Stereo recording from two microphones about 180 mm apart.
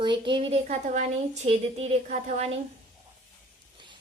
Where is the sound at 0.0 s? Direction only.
25° right (ahead or behind).